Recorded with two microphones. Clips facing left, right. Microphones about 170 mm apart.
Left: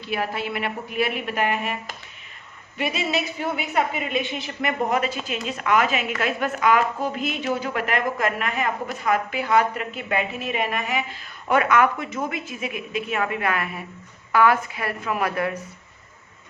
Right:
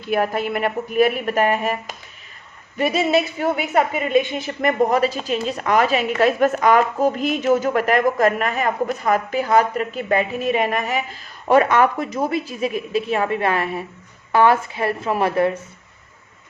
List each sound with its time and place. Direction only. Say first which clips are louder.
0.0 s speech: right 6 dB; 50° right (ahead or behind)
2.7 s a woman's voice: right 7 dB; 45° right (ahead or behind)